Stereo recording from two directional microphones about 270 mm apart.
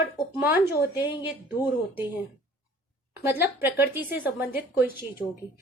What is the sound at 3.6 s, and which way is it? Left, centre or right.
Speech, centre.